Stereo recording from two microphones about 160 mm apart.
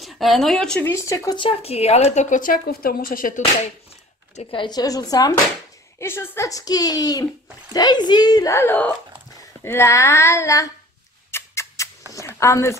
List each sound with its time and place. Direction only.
0.0 s speech: centre (ahead or behind); by 3.4 s 60° left (ahead or behind)
4.4 s speech: 30° left (ahead or behind)
11.3 s a sound: 20° left (ahead or behind)
12.1 s speech: 20° left (ahead or behind)